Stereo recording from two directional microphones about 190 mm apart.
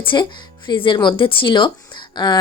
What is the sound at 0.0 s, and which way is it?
A woman's voice, 25° left (ahead or behind).